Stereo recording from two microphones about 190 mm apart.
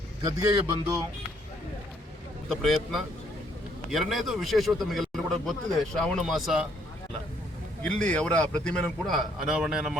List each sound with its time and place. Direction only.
0.3 s a man's voice: 25° right (ahead or behind)
2.5 s a man's voice: centre (ahead or behind)
7.9 s a man's voice: 5° left (ahead or behind)